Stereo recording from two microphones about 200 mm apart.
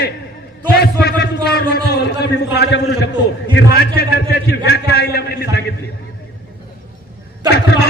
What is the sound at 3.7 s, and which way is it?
A man's voice, 50° left (ahead or behind).